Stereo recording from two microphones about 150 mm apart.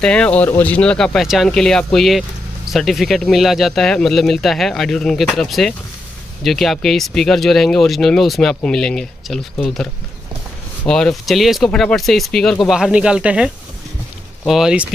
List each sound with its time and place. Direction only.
0.0 s speech: 5° left (ahead or behind)